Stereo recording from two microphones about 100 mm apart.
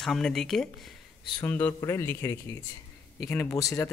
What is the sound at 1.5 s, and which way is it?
Speech, 20° left (ahead or behind).